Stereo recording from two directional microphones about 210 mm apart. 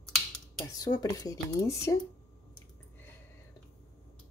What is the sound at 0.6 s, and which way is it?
A woman's voice, 15° left (ahead or behind).